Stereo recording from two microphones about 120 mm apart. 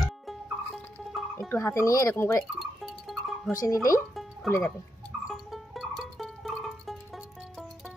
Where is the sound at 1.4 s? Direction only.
25° left (ahead or behind).